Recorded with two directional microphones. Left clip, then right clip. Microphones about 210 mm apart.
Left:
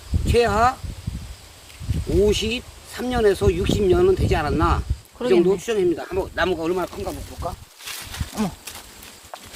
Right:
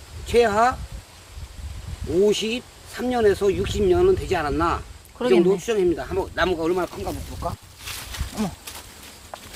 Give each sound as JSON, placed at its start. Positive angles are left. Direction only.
{"t": 0.3, "sound": "speech", "side_deg": 5}
{"t": 2.2, "sound": "speech", "side_deg": 5}
{"t": 5.2, "sound": "speech", "side_deg": -10}
{"t": 5.5, "sound": "speech", "side_deg": 5}